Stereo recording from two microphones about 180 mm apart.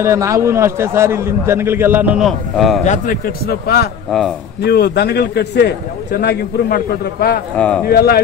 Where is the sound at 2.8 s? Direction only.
40° left (ahead or behind).